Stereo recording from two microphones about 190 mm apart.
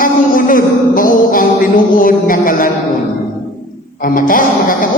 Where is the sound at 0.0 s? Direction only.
45° left (ahead or behind).